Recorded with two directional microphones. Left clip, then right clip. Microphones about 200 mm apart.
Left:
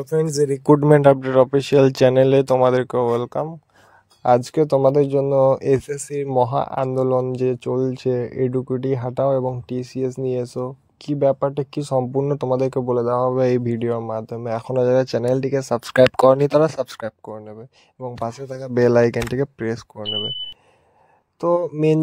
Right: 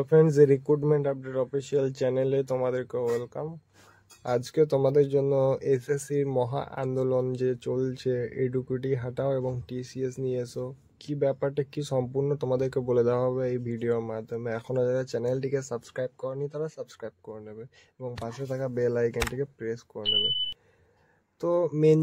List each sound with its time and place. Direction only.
0.0 s speech: centre (ahead or behind)
0.7 s speech: 50° left (ahead or behind); by 12.9 s 30° left (ahead or behind)
12.9 s speech: 15° left (ahead or behind)
13.3 s speech: 35° left (ahead or behind)
18.8 s speech: 40° left (ahead or behind)
21.4 s speech: 30° left (ahead or behind)